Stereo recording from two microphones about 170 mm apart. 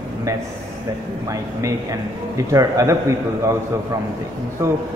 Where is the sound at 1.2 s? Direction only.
20° right (ahead or behind).